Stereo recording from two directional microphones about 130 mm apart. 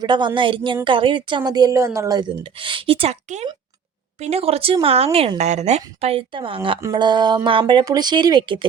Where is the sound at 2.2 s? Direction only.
40° right (ahead or behind).